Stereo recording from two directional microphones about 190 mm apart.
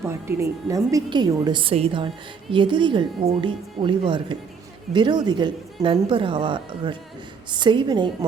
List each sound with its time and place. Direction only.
0.1 s a woman's voice: 15° right (ahead or behind)